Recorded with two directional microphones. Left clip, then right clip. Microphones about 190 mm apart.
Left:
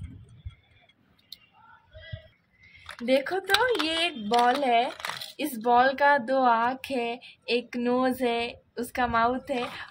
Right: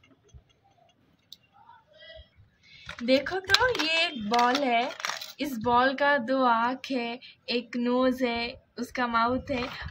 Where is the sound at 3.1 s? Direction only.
35° left (ahead or behind).